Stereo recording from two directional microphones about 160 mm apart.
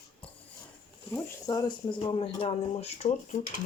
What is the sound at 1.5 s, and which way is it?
Speech, 25° left (ahead or behind).